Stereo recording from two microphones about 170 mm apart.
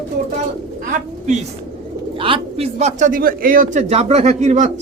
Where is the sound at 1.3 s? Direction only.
45° right (ahead or behind).